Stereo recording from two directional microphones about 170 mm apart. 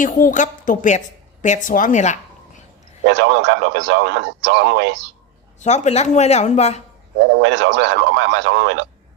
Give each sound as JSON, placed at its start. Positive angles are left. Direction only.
{"t": 0.0, "sound": "a woman's voice", "side_deg": 50}
{"t": 3.1, "sound": "speech", "side_deg": -90}
{"t": 5.5, "sound": "speech", "side_deg": 45}
{"t": 7.3, "sound": "speech", "side_deg": -90}